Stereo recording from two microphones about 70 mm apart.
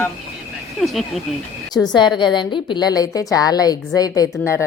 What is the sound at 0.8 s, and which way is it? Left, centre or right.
Speech, centre.